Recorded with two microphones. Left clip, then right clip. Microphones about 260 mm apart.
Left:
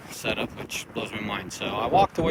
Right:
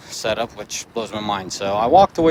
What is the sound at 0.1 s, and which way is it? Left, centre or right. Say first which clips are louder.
Speech: right 7 dB; right.